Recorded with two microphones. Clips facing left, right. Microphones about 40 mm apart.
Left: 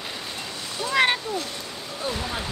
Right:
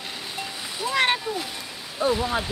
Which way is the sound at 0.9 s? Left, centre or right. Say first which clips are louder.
Left 1 dB; centre.